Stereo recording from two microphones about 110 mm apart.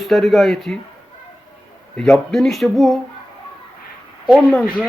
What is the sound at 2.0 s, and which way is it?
Speech, 5° left (ahead or behind).